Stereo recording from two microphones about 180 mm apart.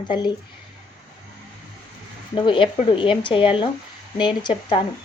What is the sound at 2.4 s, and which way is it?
Speech, 25° left (ahead or behind).